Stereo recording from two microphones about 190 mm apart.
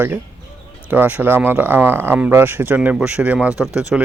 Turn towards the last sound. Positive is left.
turn(degrees=-5)  # may be behind; listen again after turning